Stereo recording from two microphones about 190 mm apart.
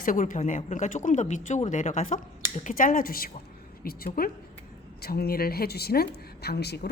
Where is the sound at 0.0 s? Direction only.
45° left (ahead or behind).